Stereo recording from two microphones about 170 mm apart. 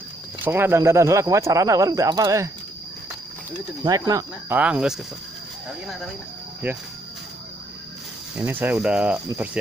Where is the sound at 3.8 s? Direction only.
20° right (ahead or behind).